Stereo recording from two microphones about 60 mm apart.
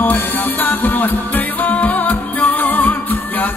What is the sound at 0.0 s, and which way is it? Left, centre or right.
Music, left.